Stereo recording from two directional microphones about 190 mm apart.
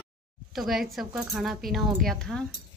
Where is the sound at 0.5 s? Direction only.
Centre (ahead or behind).